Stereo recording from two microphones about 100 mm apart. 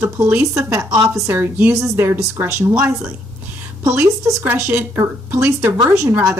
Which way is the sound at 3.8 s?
10° right (ahead or behind).